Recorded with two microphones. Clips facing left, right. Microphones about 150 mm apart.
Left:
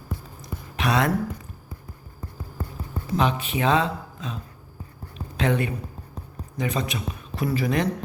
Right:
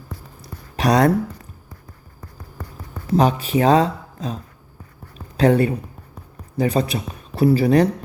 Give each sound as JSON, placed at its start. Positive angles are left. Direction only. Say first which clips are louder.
{"t": 0.4, "sound": "a sound", "louder": "right 6 dB", "side_deg": -40}
{"t": 3.2, "sound": "speech", "louder": "right 7 dB", "side_deg": -40}
{"t": 5.4, "sound": "speech", "louder": "right 8 dB", "side_deg": -35}